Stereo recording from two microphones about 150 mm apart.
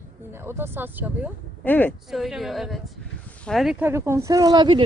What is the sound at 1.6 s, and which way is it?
Speech, 10° left (ahead or behind).